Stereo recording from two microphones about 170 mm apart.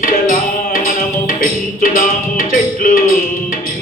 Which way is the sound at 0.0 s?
55° left (ahead or behind).